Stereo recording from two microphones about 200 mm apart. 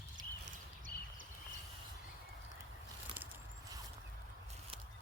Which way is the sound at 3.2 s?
5° right (ahead or behind).